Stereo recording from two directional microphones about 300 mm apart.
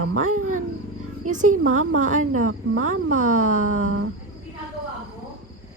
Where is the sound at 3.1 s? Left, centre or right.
Right.